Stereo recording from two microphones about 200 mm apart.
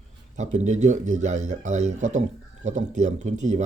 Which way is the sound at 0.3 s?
35° right (ahead or behind).